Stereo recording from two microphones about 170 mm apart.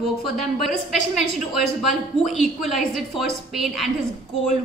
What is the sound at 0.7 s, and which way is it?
A woman's voice, centre (ahead or behind).